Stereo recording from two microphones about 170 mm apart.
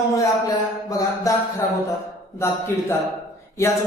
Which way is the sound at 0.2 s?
20° left (ahead or behind).